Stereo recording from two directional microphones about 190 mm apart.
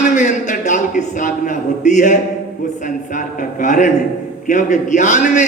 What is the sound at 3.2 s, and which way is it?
A man's voice, 40° left (ahead or behind).